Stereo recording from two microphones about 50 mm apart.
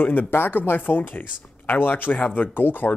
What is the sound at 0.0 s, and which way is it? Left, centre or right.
Speech, left.